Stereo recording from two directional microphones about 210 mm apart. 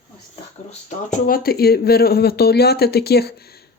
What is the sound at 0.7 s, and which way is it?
Speech, 35° left (ahead or behind).